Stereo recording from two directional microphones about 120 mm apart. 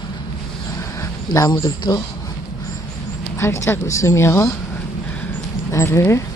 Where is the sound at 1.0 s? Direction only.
30° left (ahead or behind).